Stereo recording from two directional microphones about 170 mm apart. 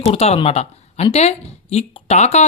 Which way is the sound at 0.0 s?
35° left (ahead or behind).